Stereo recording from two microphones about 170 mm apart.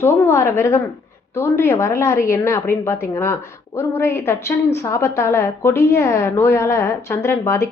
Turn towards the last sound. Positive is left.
turn(degrees=15)  # may be behind; listen again after turning